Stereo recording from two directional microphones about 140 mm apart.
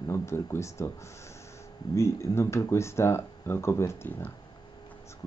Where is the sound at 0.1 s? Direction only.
20° left (ahead or behind).